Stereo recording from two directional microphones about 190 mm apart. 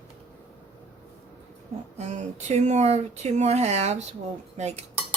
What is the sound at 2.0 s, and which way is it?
Speech, 35° right (ahead or behind).